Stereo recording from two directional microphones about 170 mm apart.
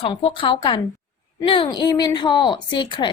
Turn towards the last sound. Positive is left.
turn(degrees=25)  # may be behind; listen again after turning